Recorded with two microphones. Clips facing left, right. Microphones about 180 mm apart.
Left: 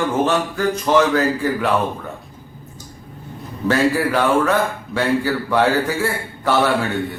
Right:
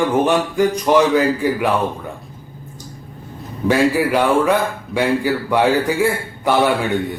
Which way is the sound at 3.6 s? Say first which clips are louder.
Right 2 dB; 15° right (ahead or behind).